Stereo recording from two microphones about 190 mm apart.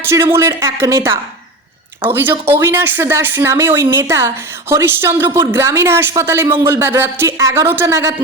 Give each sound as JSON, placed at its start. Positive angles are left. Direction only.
{"t": 0.0, "sound": "speech", "side_deg": -15}
{"t": 2.5, "sound": "speech", "side_deg": -15}